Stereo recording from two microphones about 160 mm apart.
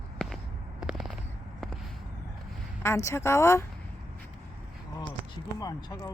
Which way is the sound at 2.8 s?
15° left (ahead or behind).